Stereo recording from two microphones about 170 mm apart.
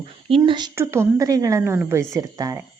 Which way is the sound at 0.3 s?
30° right (ahead or behind).